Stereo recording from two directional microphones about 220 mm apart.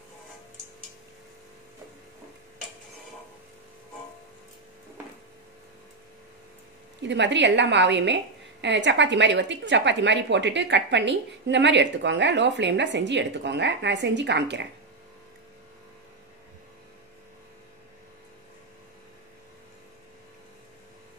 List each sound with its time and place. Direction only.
7.0 s a woman's voice: 55° right (ahead or behind)